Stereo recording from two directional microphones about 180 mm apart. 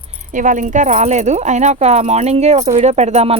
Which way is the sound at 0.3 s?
45° right (ahead or behind).